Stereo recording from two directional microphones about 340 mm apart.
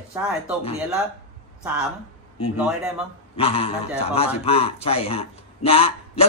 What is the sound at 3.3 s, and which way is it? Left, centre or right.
A man's voice, centre.